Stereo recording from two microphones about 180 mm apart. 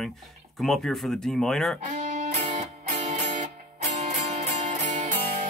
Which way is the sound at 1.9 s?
35° right (ahead or behind).